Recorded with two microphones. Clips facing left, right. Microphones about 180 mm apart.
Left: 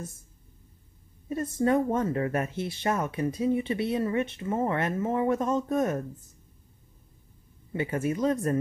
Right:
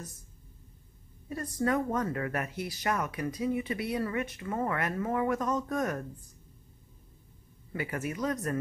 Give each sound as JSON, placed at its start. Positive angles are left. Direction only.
{"t": 1.3, "sound": "speech", "side_deg": 25}
{"t": 7.7, "sound": "speech", "side_deg": 25}